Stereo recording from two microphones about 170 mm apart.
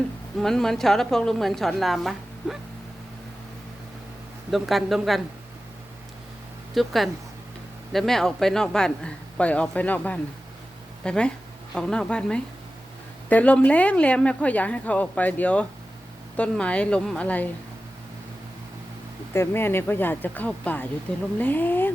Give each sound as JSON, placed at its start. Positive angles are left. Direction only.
{"t": 0.3, "sound": "a woman's voice", "side_deg": 0}
{"t": 4.5, "sound": "a woman's voice", "side_deg": 0}
{"t": 6.7, "sound": "a woman's voice", "side_deg": 0}
{"t": 19.3, "sound": "speech", "side_deg": 15}